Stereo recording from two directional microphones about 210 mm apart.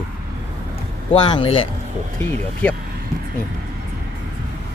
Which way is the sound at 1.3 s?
25° left (ahead or behind).